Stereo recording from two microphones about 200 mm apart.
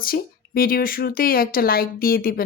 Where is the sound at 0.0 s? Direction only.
45° left (ahead or behind).